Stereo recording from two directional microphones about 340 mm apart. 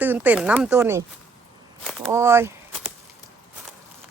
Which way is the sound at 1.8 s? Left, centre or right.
Centre.